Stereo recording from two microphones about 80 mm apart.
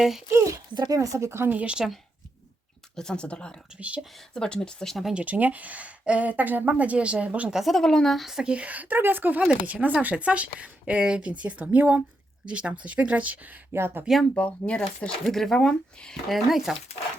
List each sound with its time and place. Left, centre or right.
0.0 s speech: centre
0.7 s speech: right
0.9 s speech: right
1.5 s speech: centre
2.9 s speech: centre
3.8 s speech: centre
4.4 s speech: centre
5.1 s speech: centre
7.5 s speech: centre; by 14.0 s right
14.3 s speech: centre
16.3 s speech: centre